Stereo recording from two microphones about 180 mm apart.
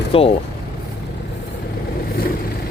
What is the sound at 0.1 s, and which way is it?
Speech, 30° left (ahead or behind).